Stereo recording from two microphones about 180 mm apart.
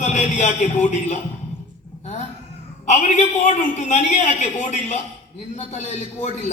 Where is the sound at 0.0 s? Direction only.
40° left (ahead or behind).